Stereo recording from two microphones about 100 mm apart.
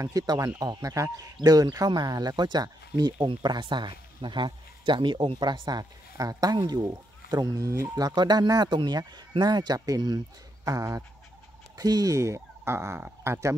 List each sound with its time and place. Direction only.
0.0 s speech: 35° right (ahead or behind); by 5.4 s 60° right (ahead or behind)
5.4 s speech: 45° right (ahead or behind); by 13.6 s 30° right (ahead or behind)